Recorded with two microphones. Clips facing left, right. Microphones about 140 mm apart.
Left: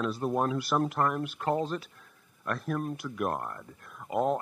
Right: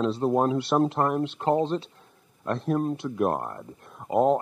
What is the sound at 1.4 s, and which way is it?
Speech, 30° right (ahead or behind).